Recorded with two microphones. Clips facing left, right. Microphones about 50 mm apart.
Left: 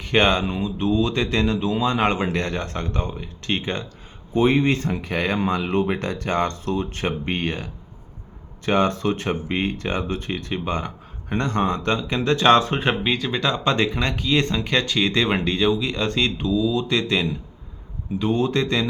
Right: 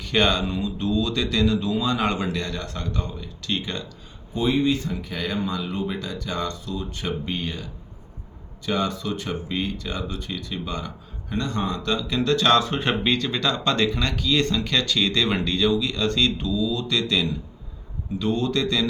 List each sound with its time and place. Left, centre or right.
0.0 s speech: left
4.4 s speech: left
12.8 s speech: centre; by 18.9 s left